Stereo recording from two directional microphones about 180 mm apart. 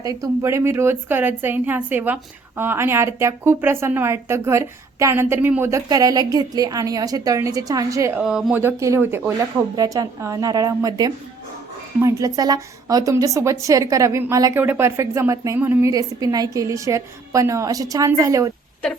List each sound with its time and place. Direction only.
0.0 s a woman's voice: 20° right (ahead or behind)
8.2 s speech: 5° right (ahead or behind)
8.6 s a woman's voice: 15° right (ahead or behind)